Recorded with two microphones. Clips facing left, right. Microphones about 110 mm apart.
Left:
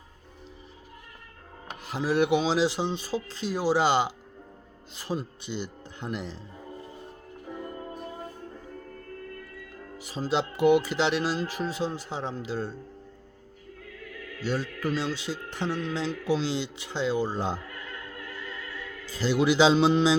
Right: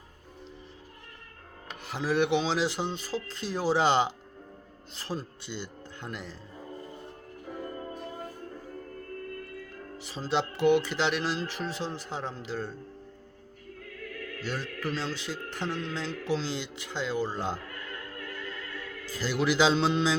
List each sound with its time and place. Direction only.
1.8 s speech: 5° left (ahead or behind)
10.0 s speech: 10° left (ahead or behind)
14.5 s speech: 10° left (ahead or behind)
19.1 s speech: 20° left (ahead or behind)